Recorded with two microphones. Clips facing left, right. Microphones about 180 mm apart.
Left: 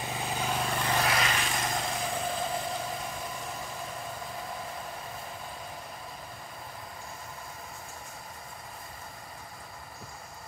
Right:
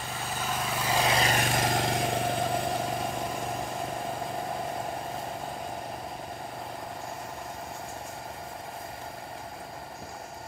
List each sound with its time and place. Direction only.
0.1 s vehicle: 15° left (ahead or behind)
0.4 s vehicle: centre (ahead or behind)
1.2 s vehicle: 45° right (ahead or behind)
1.8 s vehicle: 65° right (ahead or behind)